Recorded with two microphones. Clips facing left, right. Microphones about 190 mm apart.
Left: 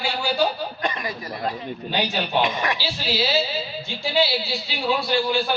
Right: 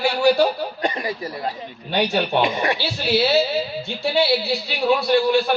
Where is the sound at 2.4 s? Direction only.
30° right (ahead or behind).